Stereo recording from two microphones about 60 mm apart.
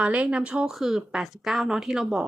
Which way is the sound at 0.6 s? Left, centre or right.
Centre.